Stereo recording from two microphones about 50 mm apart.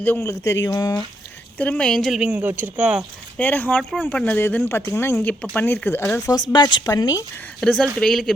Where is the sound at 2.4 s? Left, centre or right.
Right.